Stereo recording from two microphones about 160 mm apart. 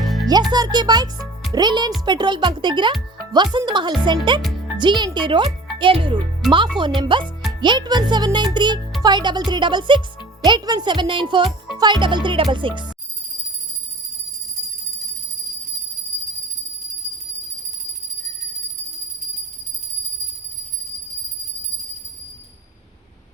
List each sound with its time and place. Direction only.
0.5 s a child's voice: 25° right (ahead or behind)